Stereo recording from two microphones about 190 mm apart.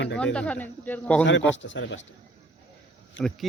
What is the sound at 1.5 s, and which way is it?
Speech, 80° left.